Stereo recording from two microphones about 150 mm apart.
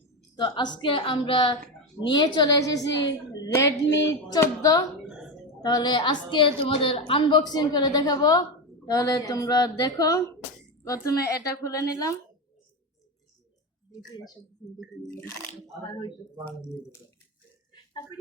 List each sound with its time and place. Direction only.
0.3 s a woman's voice: 30° left (ahead or behind)
15.1 s speech: 15° left (ahead or behind)